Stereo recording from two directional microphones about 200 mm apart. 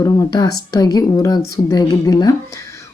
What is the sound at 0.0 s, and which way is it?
A woman's voice, 15° left (ahead or behind).